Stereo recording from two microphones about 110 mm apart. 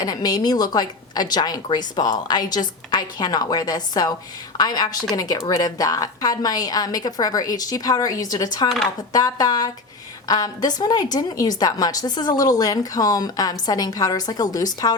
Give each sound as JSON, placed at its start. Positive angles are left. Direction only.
{"t": 0.0, "sound": "a woman's voice", "side_deg": 35}